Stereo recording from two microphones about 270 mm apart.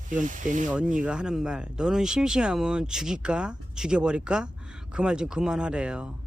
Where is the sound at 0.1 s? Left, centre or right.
Right.